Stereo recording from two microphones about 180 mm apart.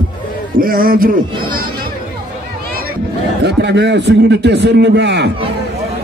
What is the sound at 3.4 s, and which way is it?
A man's voice, 70° right (ahead or behind).